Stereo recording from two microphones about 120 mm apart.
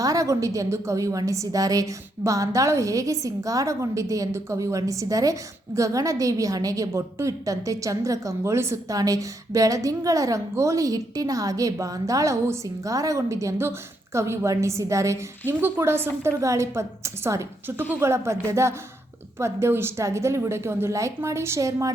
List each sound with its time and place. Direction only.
0.0 s a woman's voice: 30° right (ahead or behind)